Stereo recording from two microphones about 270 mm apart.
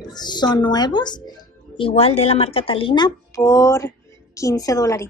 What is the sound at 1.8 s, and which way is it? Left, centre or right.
A woman's voice, left.